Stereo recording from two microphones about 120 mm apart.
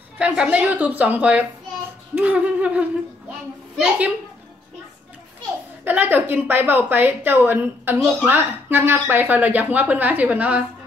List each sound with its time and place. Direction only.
0.2 s a woman's voice: 10° right (ahead or behind)
5.9 s a woman's voice: 15° right (ahead or behind)